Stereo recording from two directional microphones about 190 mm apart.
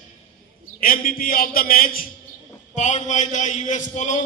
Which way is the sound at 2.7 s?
40° left (ahead or behind).